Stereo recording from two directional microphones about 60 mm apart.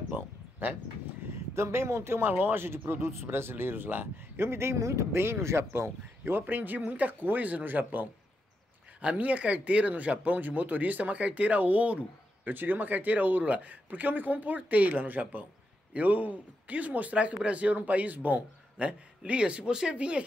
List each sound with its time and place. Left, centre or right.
0.1 s a sound: right
0.6 s speech: right
1.5 s speech: right
5.2 s speech: right
9.0 s speech: right